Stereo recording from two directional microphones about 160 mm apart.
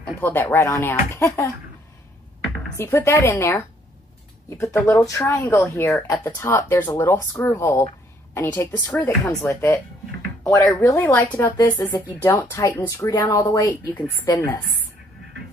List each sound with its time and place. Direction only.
0.0 s speech: 10° left (ahead or behind)
2.7 s speech: 15° left (ahead or behind)
6.2 s speech: 20° left (ahead or behind)
10.8 s speech: 20° left (ahead or behind)